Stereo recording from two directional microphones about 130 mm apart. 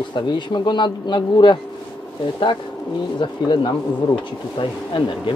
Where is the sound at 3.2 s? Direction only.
40° left (ahead or behind).